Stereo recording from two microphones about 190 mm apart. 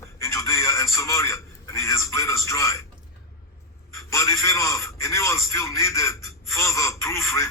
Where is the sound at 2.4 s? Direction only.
15° left (ahead or behind).